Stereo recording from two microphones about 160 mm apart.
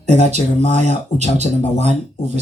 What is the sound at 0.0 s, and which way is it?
Speech, 45° right (ahead or behind).